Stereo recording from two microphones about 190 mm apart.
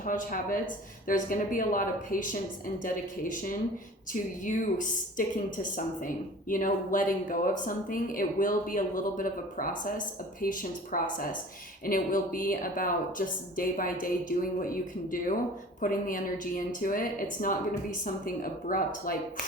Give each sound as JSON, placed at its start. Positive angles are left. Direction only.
{"t": 0.0, "sound": "a woman's voice", "side_deg": 45}
{"t": 4.1, "sound": "a woman's voice", "side_deg": 40}